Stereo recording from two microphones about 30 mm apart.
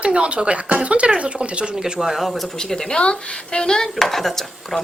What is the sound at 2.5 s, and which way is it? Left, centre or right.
Speech, centre.